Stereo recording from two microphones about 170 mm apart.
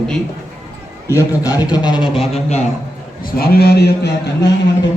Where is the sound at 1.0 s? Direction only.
20° left (ahead or behind); by 2.6 s 35° left (ahead or behind).